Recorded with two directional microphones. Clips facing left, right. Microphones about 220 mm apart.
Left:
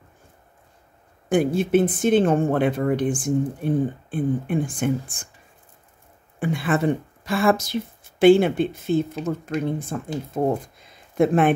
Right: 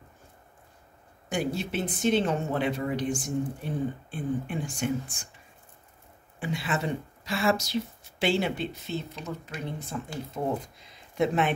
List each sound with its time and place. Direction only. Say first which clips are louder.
1.3 s speech: left 11 dB; 50° left (ahead or behind)
6.4 s speech: left 9 dB; 50° left (ahead or behind)